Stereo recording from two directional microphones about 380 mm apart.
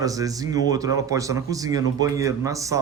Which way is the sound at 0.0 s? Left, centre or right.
Centre.